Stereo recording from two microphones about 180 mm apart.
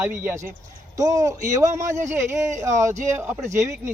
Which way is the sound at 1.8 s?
45° right (ahead or behind).